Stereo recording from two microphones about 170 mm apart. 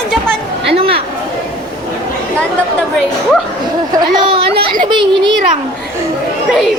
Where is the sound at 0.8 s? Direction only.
35° right (ahead or behind).